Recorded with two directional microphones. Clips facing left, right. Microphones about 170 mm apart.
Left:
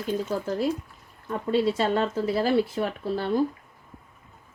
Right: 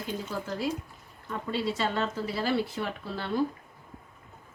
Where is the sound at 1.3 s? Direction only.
45° left (ahead or behind).